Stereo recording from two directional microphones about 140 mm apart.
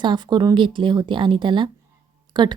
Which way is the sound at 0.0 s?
35° right (ahead or behind).